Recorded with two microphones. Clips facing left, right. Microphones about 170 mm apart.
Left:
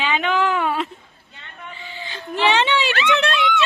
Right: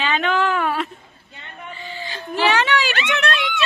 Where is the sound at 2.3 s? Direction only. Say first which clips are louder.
Even; 25° left (ahead or behind).